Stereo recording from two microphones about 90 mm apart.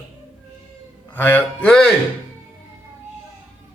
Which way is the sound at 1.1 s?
20° left (ahead or behind).